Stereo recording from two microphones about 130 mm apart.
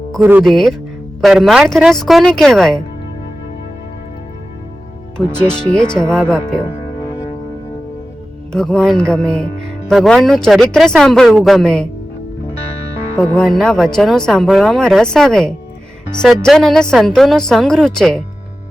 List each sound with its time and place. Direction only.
0.2 s speech: 15° right (ahead or behind)
0.4 s speech: 5° left (ahead or behind)
5.1 s speech: 5° left (ahead or behind)
8.5 s speech: 5° left (ahead or behind)
13.1 s speech: 5° left (ahead or behind)